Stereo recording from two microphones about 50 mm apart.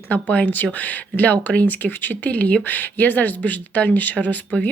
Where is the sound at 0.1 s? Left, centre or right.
Left.